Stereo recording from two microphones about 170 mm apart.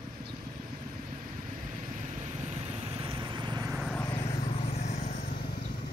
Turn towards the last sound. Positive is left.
turn(degrees=45)  # may be behind; listen again after turning